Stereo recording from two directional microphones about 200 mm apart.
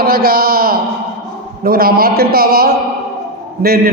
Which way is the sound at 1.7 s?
45° right (ahead or behind).